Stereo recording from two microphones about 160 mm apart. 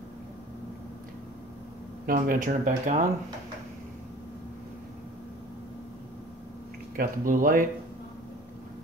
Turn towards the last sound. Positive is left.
turn(degrees=-60)  # may be behind; listen again after turning